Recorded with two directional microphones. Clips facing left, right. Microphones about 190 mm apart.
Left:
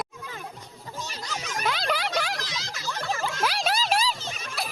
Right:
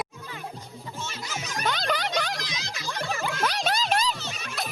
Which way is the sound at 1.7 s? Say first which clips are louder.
Even; 5° left (ahead or behind).